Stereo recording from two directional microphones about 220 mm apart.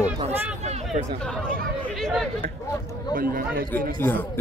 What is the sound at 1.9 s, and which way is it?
Speech, centre (ahead or behind).